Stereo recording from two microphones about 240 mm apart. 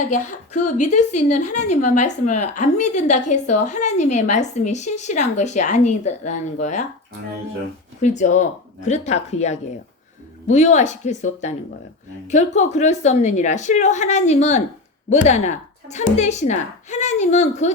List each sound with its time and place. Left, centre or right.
0.5 s a woman's voice: left
8.0 s a woman's voice: left
12.5 s a woman's voice: left